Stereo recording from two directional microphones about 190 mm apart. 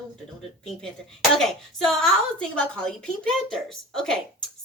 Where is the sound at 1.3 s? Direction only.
Centre (ahead or behind).